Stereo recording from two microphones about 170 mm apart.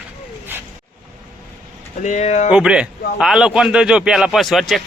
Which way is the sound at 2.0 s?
45° left (ahead or behind).